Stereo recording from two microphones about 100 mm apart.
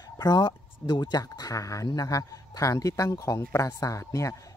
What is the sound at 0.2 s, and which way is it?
Speech, 45° left (ahead or behind).